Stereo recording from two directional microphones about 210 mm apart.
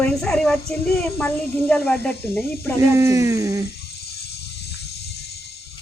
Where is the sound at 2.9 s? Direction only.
15° right (ahead or behind).